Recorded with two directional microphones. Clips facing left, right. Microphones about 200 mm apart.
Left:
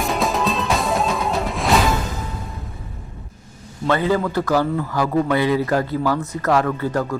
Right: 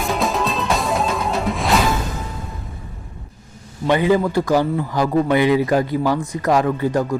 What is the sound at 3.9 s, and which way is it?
A man's voice, 15° right (ahead or behind).